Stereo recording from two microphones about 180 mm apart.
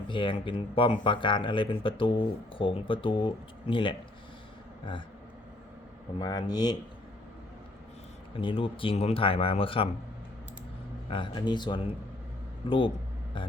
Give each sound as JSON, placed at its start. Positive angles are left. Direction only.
{"t": 0.1, "sound": "speech", "side_deg": 25}
{"t": 6.1, "sound": "speech", "side_deg": 20}
{"t": 8.4, "sound": "speech", "side_deg": 30}
{"t": 11.1, "sound": "speech", "side_deg": 25}